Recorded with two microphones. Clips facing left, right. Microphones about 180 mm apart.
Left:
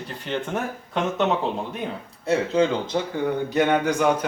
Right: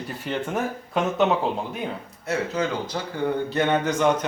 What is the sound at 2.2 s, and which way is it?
Speech, 30° left (ahead or behind).